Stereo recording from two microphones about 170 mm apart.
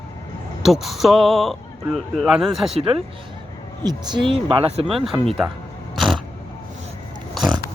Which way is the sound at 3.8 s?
25° right (ahead or behind).